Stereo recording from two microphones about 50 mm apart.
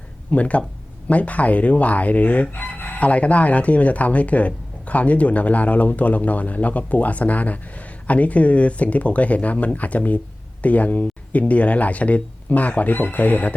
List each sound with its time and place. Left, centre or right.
0.3 s speech: left
3.0 s speech: left